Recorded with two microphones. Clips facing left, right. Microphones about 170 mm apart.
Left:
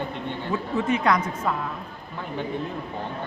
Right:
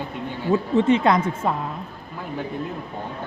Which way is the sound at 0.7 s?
25° right (ahead or behind).